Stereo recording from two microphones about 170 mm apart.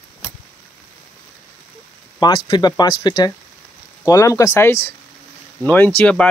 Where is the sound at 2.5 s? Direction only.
25° left (ahead or behind).